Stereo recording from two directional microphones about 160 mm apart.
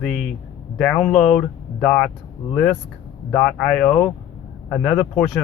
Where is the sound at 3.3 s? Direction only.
10° left (ahead or behind).